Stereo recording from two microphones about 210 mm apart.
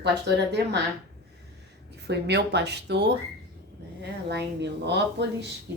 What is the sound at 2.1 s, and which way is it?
Speech, 55° right (ahead or behind).